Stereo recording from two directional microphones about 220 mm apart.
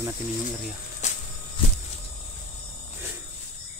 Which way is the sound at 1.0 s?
30° left (ahead or behind).